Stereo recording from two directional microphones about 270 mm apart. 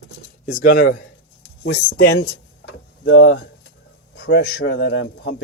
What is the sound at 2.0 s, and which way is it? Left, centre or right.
Speech, left.